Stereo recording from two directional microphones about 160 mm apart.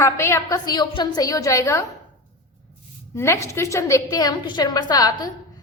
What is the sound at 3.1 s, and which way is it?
A woman's voice, 15° left (ahead or behind).